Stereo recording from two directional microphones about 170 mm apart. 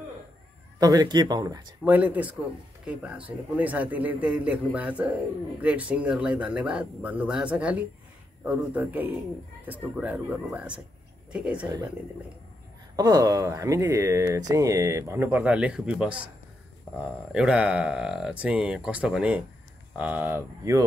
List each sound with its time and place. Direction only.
0.7 s speech: 20° right (ahead or behind)
1.9 s a man's voice: 10° right (ahead or behind)
11.6 s speech: 25° right (ahead or behind)
12.9 s a man's voice: 25° right (ahead or behind)